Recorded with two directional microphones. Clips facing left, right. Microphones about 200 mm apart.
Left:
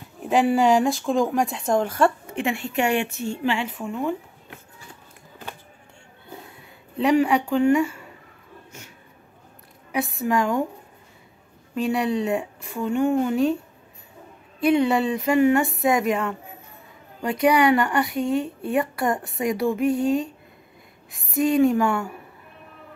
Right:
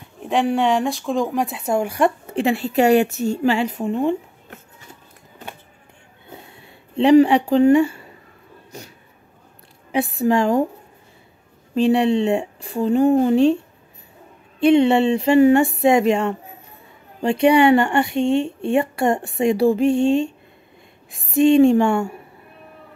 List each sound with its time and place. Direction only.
0.2 s speech: centre (ahead or behind)
2.3 s a woman's voice: 35° right (ahead or behind)
6.6 s a woman's voice: 30° right (ahead or behind)
9.9 s a woman's voice: 30° right (ahead or behind)
11.7 s speech: 30° right (ahead or behind)
14.6 s speech: 25° right (ahead or behind)